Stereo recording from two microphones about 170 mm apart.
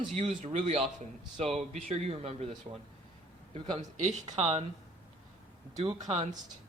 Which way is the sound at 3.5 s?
30° right (ahead or behind).